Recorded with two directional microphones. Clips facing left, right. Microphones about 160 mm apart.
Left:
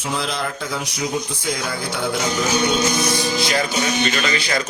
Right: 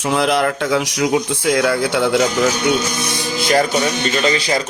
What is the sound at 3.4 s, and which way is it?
Speech, 50° right (ahead or behind).